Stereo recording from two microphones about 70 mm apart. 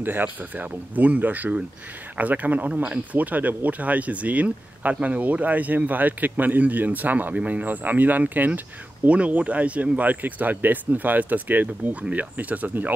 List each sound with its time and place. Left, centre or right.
0.0 s speech: right